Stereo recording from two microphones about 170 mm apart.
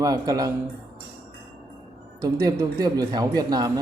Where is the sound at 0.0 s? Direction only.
20° right (ahead or behind).